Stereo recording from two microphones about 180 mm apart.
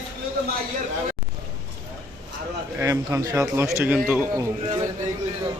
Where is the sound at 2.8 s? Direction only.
15° right (ahead or behind).